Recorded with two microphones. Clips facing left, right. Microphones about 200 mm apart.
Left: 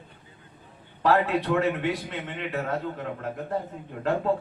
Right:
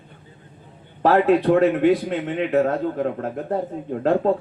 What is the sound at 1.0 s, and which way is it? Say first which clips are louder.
A man's voice: right 7 dB; 50° right (ahead or behind).